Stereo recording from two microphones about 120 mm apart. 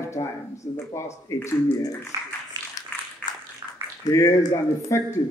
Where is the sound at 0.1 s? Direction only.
25° left (ahead or behind).